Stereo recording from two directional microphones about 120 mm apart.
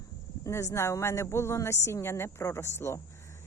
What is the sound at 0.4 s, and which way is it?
A woman's voice, 25° left (ahead or behind).